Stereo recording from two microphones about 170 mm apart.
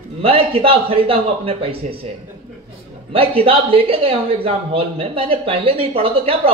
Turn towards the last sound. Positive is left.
turn(degrees=-35)  # may be behind; listen again after turning